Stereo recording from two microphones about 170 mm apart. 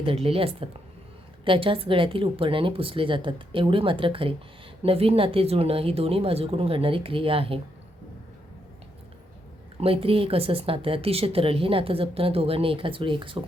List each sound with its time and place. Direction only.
0.0 s speech: 35° right (ahead or behind)
9.8 s speech: 35° right (ahead or behind)